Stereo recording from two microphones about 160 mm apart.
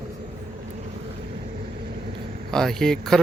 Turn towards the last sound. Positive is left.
turn(degrees=5)  # may be behind; listen again after turning